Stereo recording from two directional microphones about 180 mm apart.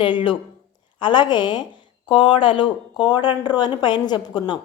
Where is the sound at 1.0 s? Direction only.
25° left (ahead or behind).